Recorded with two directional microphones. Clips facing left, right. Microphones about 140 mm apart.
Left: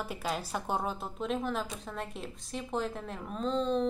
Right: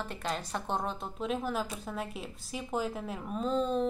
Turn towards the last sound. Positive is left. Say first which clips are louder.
# even
turn(degrees=-5)  # may be behind; listen again after turning